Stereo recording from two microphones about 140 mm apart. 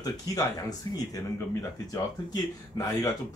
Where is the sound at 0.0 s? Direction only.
25° left (ahead or behind).